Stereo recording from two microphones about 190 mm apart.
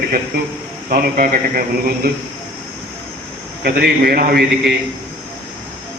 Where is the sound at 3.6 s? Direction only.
55° right (ahead or behind).